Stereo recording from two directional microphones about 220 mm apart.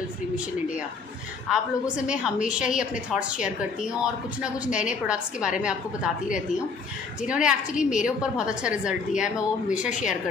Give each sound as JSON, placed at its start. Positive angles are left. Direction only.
{"t": 1.5, "sound": "a woman's voice", "side_deg": -5}
{"t": 7.2, "sound": "a woman's voice", "side_deg": -5}